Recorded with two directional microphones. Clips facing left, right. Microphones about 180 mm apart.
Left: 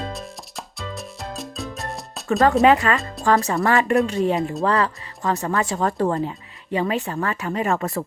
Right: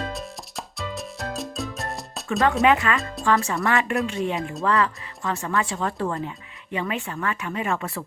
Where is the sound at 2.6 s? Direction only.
40° left (ahead or behind).